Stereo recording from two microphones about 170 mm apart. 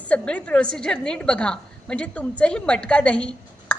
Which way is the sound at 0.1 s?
5° left (ahead or behind).